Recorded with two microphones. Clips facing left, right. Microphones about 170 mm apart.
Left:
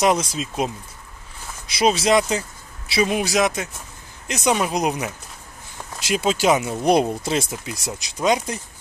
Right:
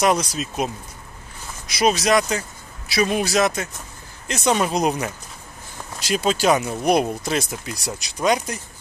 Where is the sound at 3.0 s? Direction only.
15° left (ahead or behind).